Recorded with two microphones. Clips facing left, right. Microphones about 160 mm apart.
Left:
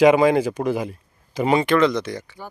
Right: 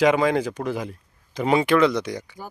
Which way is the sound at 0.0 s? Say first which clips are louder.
Left 4 dB; 10° left (ahead or behind).